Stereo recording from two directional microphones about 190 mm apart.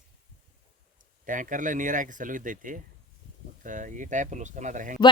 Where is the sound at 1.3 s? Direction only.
45° right (ahead or behind).